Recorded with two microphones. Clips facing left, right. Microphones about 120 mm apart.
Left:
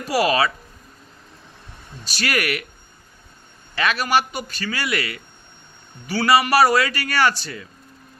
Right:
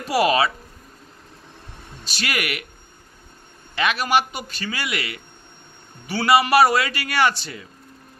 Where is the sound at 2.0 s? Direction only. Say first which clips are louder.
Left 3 dB; 20° right (ahead or behind).